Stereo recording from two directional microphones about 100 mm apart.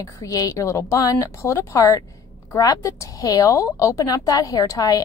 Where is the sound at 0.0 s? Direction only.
35° left (ahead or behind).